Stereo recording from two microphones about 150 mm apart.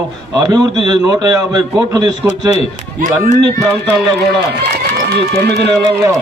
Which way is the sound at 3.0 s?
60° right (ahead or behind).